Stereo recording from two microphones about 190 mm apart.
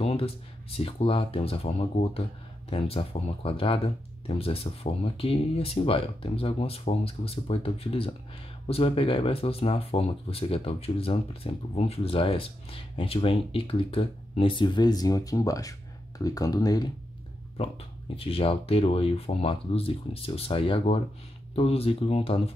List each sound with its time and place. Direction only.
0.0 s speech: 30° left (ahead or behind)
17.6 s speech: 30° left (ahead or behind)